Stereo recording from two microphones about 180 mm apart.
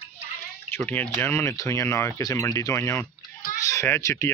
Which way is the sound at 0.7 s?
10° left (ahead or behind).